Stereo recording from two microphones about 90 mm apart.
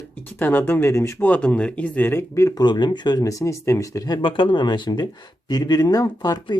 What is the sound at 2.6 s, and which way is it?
Speech, 55° left (ahead or behind).